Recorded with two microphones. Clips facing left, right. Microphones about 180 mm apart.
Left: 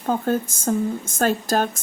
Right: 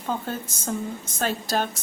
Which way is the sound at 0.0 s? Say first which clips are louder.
Left 8 dB; 50° left (ahead or behind).